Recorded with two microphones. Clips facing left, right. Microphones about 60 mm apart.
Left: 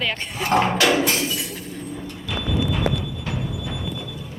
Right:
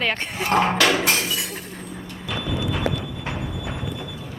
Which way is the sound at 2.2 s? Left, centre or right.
Centre.